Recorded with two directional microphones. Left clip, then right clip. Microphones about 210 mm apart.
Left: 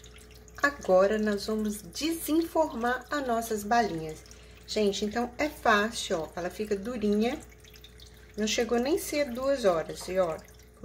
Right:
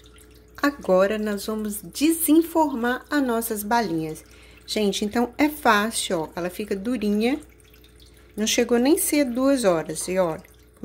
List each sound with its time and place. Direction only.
0.6 s speech: 45° right (ahead or behind)
8.4 s speech: 50° right (ahead or behind)